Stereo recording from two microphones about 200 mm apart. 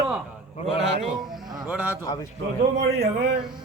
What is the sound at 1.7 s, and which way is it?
Speech, 10° right (ahead or behind).